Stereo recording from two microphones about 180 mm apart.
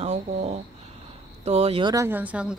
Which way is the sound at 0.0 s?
35° right (ahead or behind).